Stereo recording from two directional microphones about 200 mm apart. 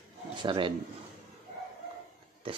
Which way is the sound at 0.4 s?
25° right (ahead or behind).